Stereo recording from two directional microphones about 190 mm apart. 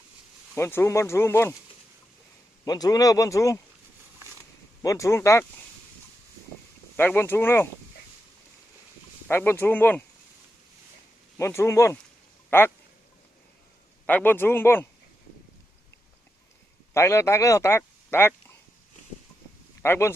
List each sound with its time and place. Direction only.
0.5 s speech: 10° left (ahead or behind)
2.6 s speech: 20° left (ahead or behind)
4.8 s speech: 15° left (ahead or behind)
6.9 s speech: 10° left (ahead or behind)
9.2 s speech: 10° left (ahead or behind)
11.3 s speech: 15° left (ahead or behind)
14.1 s speech: 10° left (ahead or behind)
16.9 s speech: 15° left (ahead or behind)
19.8 s speech: 15° left (ahead or behind)